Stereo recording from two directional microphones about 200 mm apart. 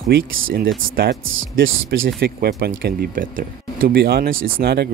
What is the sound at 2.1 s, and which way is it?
Speech, 50° right (ahead or behind).